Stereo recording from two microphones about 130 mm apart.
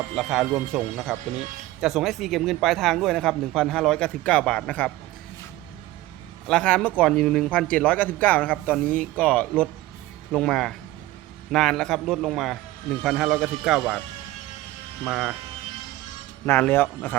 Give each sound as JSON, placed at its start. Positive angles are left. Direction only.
{"t": 0.2, "sound": "speech", "side_deg": 0}
{"t": 6.5, "sound": "speech", "side_deg": 5}
{"t": 16.5, "sound": "speech", "side_deg": 15}